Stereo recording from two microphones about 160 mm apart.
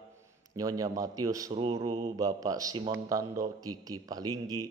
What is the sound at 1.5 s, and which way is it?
Speech, 35° right (ahead or behind).